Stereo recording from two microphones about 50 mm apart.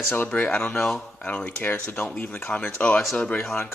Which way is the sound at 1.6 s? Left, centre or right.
Left.